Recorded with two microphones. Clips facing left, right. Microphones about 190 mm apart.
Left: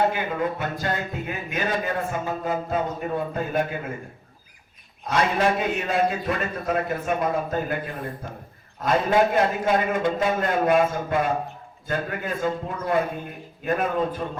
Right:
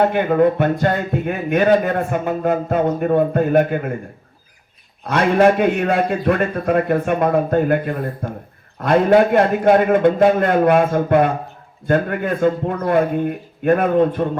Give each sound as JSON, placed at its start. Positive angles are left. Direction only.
{"t": 0.0, "sound": "speech", "side_deg": -60}
{"t": 5.0, "sound": "speech", "side_deg": -60}